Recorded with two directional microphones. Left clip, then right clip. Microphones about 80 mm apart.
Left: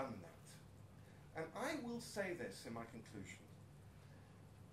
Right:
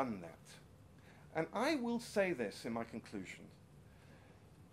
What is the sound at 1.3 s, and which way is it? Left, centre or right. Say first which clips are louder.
Speech: right 9 dB; right.